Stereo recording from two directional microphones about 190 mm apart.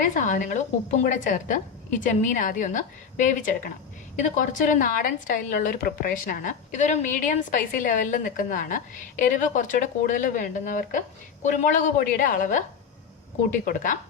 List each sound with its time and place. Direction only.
0.0 s a woman's voice: 45° left (ahead or behind)